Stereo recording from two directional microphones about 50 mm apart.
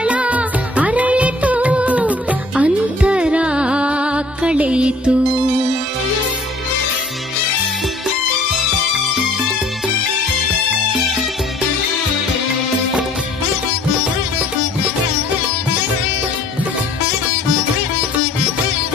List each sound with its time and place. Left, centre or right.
0.0 s music: right